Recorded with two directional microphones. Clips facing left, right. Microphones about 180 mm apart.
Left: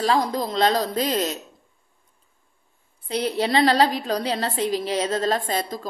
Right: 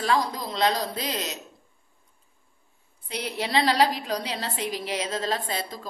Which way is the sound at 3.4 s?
55° left (ahead or behind).